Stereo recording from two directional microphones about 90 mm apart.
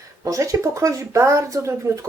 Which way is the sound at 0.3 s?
35° right (ahead or behind).